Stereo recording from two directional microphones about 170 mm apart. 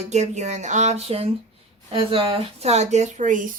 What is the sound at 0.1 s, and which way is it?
Speech, 45° right (ahead or behind).